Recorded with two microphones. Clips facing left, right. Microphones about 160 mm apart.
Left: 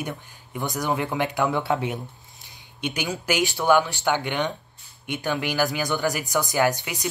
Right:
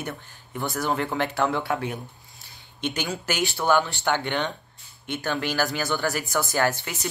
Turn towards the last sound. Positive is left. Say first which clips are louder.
# left 2 dB
turn(degrees=15)  # may be behind; listen again after turning